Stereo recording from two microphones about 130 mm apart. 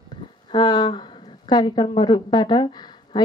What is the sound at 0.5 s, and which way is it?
A woman's voice, 35° left (ahead or behind).